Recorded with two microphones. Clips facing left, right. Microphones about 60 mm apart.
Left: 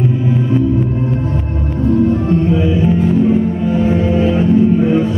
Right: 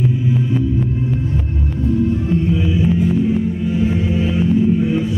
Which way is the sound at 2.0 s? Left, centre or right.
Left.